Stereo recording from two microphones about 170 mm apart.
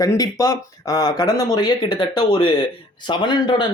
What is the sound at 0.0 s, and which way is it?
Speech, 20° left (ahead or behind).